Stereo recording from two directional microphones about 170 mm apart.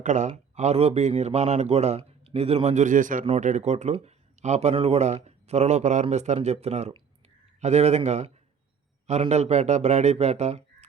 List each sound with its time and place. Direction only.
0.0 s a man's voice: 45° right (ahead or behind)
3.2 s speech: 40° right (ahead or behind)
9.3 s speech: 40° right (ahead or behind)